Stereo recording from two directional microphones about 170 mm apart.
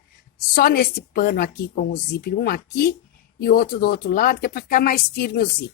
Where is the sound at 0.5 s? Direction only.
65° left (ahead or behind).